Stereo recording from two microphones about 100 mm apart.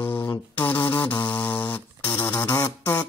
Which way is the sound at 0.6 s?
20° left (ahead or behind).